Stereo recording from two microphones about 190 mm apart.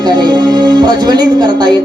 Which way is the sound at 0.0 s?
20° right (ahead or behind).